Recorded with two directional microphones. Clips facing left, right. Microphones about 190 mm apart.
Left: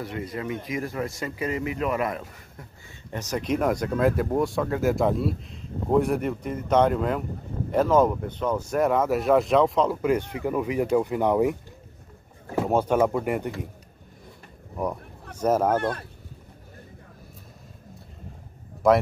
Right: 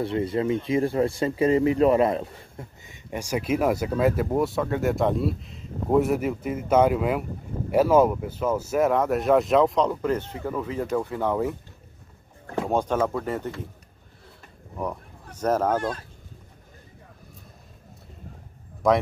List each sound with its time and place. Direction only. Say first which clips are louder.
0.0 s speech: right 7 dB; 30° right (ahead or behind)
3.1 s speech: right 1 dB; 10° right (ahead or behind); by 11.5 s 15° left (ahead or behind)
12.5 s speech: left 2 dB; 5° left (ahead or behind)
15.4 s speech: left 1 dB; 10° left (ahead or behind)
15.8 s speech: left 2 dB; 60° left (ahead or behind)
18.8 s speech: left 2 dB; centre (ahead or behind)